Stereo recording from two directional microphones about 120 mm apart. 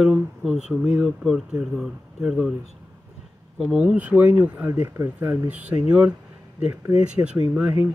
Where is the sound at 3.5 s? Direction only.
10° right (ahead or behind).